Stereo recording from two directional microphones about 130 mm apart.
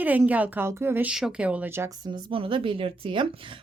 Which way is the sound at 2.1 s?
40° right (ahead or behind).